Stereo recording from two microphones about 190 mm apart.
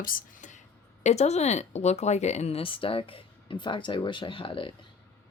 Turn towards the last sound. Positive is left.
turn(degrees=25)  # may be behind; listen again after turning